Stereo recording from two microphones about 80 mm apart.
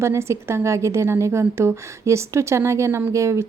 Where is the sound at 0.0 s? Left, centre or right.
Right.